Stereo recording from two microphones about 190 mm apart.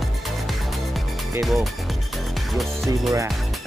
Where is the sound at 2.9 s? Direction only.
15° right (ahead or behind).